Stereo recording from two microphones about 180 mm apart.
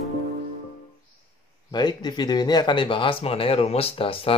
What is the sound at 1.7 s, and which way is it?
Speech, 25° left (ahead or behind).